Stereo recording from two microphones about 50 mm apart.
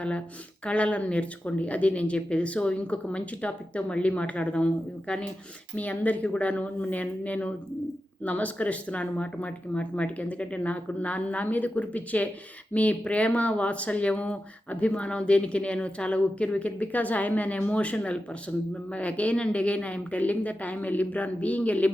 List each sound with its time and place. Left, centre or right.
0.6 s speech: left